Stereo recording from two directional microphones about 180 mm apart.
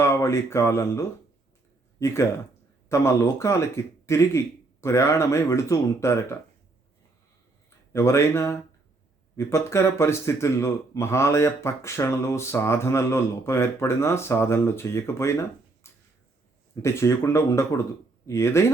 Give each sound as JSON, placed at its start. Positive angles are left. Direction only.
{"t": 0.0, "sound": "speech", "side_deg": 15}
{"t": 7.9, "sound": "speech", "side_deg": 15}